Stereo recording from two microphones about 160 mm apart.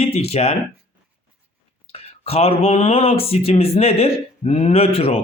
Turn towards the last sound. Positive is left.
turn(degrees=35)  # may be behind; listen again after turning